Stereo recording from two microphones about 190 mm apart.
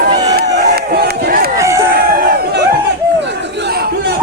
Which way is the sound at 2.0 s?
50° right (ahead or behind).